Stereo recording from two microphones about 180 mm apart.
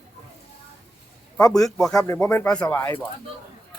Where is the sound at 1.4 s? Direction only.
20° left (ahead or behind).